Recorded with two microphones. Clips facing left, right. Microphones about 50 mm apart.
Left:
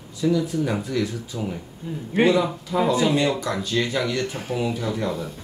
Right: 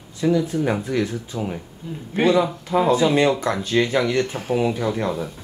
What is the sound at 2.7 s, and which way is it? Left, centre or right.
Speech, right.